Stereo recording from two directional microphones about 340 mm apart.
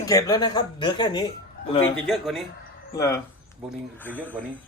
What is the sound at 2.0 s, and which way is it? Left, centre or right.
Speech, centre.